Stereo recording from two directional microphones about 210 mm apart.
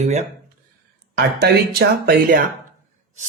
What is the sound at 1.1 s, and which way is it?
Speech, 50° right (ahead or behind).